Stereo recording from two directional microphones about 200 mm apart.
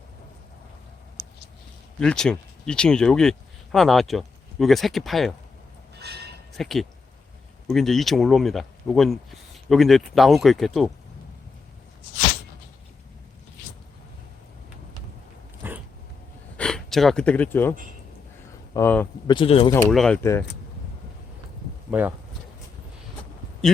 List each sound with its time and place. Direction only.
2.0 s speech: 5° left (ahead or behind)
6.0 s a sound: 55° right (ahead or behind)
6.6 s speech: centre (ahead or behind)
15.6 s dog: 10° right (ahead or behind)
16.6 s speech: 5° left (ahead or behind)
19.3 s speech: 25° left (ahead or behind)
19.9 s speech: centre (ahead or behind)
21.8 s speech: 10° right (ahead or behind)